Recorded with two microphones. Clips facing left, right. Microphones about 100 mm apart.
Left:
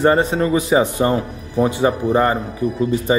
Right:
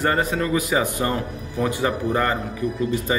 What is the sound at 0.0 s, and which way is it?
A man's voice, 25° left (ahead or behind).